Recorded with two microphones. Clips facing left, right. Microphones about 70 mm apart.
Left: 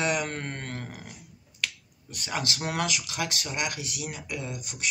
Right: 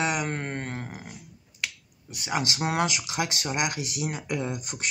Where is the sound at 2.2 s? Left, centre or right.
Centre.